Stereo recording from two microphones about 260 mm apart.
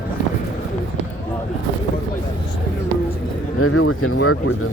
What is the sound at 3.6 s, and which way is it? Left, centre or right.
Speech, left.